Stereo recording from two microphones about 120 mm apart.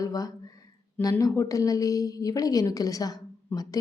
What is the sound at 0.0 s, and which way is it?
A woman's voice, 30° left (ahead or behind).